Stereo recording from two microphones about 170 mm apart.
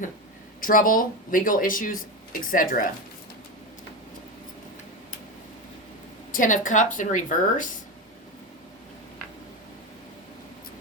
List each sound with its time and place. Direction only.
0.6 s speech: 55° left (ahead or behind)
6.3 s speech: 50° left (ahead or behind)